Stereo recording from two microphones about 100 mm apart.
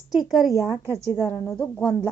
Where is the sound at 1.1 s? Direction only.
25° left (ahead or behind).